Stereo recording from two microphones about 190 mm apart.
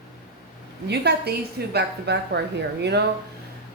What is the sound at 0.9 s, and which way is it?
Speech, 60° right (ahead or behind).